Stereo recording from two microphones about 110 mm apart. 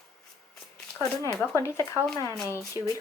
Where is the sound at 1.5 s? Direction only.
25° left (ahead or behind).